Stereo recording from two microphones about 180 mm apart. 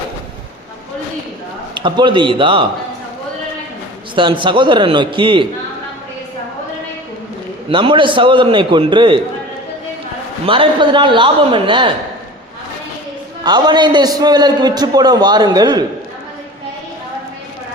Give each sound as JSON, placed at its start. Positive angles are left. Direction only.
{"t": 1.7, "sound": "a man's voice", "side_deg": -25}
{"t": 4.1, "sound": "a man's voice", "side_deg": -25}
{"t": 7.7, "sound": "a man's voice", "side_deg": -30}
{"t": 10.4, "sound": "a man's voice", "side_deg": -30}
{"t": 13.4, "sound": "a man's voice", "side_deg": -25}